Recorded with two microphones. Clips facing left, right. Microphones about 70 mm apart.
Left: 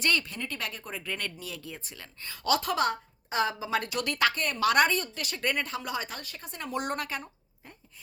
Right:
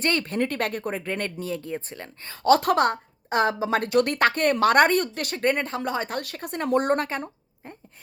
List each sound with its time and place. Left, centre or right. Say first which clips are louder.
0.0 s speech: right 6 dB; right
2.6 s a woman's voice: right 7 dB; right
6.1 s a woman's voice: right 11 dB; right